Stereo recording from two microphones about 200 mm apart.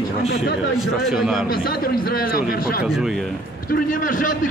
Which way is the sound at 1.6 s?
45° left (ahead or behind).